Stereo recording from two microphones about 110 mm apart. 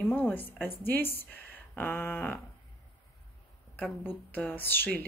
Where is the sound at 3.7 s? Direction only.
15° left (ahead or behind).